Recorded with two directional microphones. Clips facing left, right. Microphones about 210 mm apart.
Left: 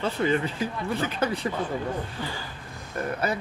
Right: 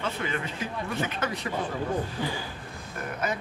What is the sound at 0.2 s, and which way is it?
Speech, 35° left (ahead or behind).